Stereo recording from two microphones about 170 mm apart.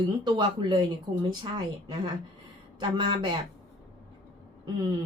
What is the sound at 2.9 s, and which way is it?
Speech, 30° right (ahead or behind).